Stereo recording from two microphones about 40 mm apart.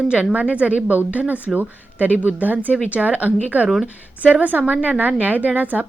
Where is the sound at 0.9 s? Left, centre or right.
Right.